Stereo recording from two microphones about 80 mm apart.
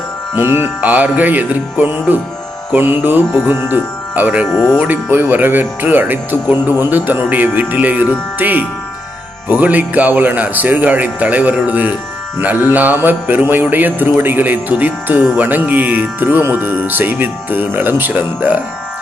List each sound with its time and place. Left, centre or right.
0.3 s music: right
3.4 s speech: right
4.5 s speech: centre
4.8 s music: right